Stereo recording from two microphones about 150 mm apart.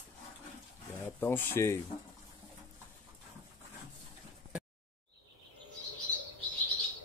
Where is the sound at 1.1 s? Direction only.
15° left (ahead or behind).